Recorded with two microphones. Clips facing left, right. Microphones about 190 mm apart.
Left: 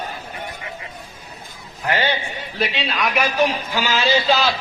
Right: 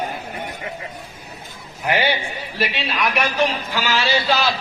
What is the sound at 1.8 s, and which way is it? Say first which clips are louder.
Speech: right 1 dB; 15° right (ahead or behind).